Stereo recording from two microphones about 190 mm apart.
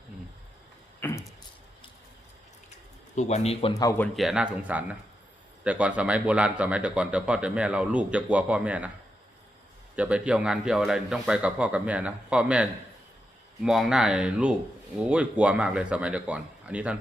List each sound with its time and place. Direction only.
0.9 s a sound: 10° left (ahead or behind)
3.2 s speech: 35° left (ahead or behind)
3.8 s a man's voice: 15° left (ahead or behind); by 8.9 s 5° right (ahead or behind)
9.9 s a man's voice: 5° right (ahead or behind)